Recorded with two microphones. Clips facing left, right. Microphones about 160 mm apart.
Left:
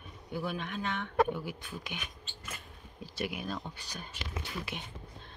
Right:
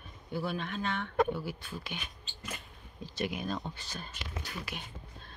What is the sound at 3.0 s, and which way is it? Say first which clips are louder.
Speech: right 2 dB; 10° left (ahead or behind).